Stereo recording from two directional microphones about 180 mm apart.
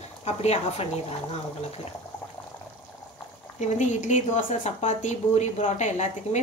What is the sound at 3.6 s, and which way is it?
A woman's voice, 40° left (ahead or behind).